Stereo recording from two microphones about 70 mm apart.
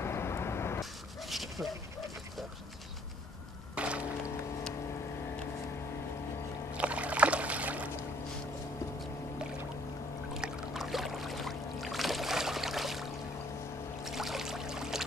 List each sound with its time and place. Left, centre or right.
0.0 s vehicle: left
1.2 s a sound: centre
3.7 s boat: centre
6.7 s rowboat: centre
10.3 s boat: centre
14.0 s a sound: centre